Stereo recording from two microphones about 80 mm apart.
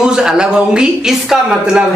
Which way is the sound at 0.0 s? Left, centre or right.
Centre.